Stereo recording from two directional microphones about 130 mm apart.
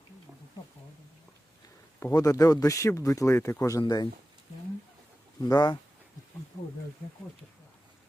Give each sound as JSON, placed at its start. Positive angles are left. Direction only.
{"t": 2.0, "sound": "speech", "side_deg": 25}
{"t": 5.5, "sound": "speech", "side_deg": 35}